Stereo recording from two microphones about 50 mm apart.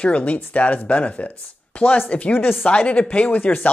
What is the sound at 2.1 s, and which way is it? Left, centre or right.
Speech, left.